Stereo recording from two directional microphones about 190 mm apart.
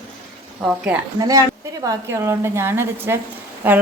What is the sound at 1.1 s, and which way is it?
A woman's voice, 20° right (ahead or behind).